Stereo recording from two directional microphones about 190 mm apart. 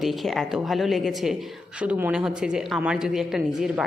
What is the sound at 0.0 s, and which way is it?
A woman's voice, centre (ahead or behind).